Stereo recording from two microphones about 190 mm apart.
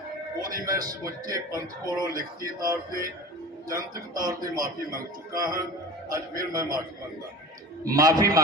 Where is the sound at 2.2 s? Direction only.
50° right (ahead or behind).